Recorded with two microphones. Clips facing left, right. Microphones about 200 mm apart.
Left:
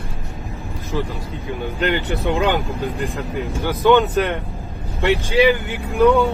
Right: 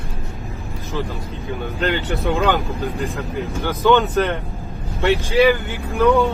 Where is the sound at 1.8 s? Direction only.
15° left (ahead or behind).